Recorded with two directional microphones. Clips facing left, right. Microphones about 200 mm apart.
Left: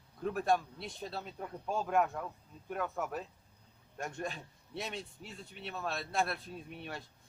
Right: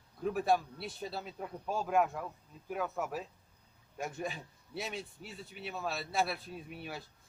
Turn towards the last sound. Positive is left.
turn(degrees=-5)  # may be behind; listen again after turning